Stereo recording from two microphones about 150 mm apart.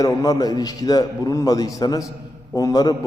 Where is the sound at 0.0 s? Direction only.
25° left (ahead or behind).